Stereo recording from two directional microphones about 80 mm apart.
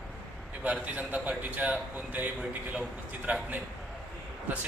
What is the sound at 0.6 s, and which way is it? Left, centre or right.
A man's voice, centre.